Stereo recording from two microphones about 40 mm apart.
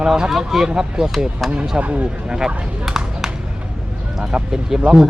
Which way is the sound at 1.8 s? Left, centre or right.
Right.